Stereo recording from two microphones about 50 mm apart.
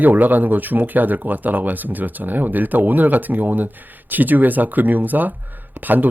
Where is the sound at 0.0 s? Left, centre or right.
Right.